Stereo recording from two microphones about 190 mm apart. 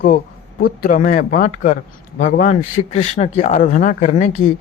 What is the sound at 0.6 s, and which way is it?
Speech, 45° left (ahead or behind).